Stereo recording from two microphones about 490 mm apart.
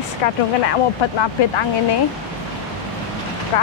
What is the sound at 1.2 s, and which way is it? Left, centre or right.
Speech, left.